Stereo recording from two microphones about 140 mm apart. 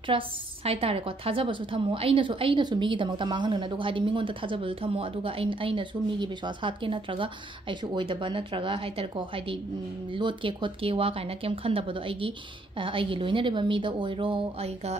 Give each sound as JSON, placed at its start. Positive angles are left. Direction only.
{"t": 0.1, "sound": "a woman's voice", "side_deg": -40}